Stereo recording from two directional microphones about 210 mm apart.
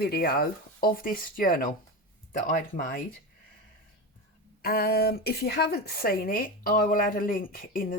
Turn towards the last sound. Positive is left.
turn(degrees=40)  # may be behind; listen again after turning